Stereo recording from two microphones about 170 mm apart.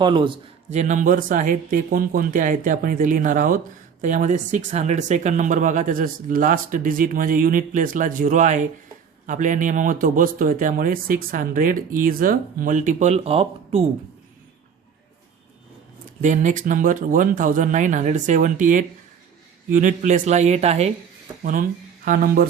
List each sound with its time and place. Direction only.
0.0 s a man's voice: 30° right (ahead or behind)
0.7 s speech: 45° right (ahead or behind)
16.2 s speech: 45° right (ahead or behind)
21.4 s speech: 50° right (ahead or behind)